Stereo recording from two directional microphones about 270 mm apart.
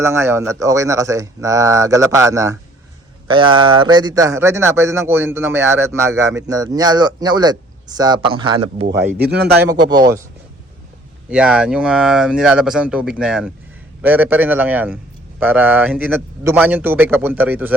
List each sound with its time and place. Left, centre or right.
0.0 s a man's voice: centre
9.2 s speech: right
9.6 s a man's voice: centre
11.3 s a man's voice: centre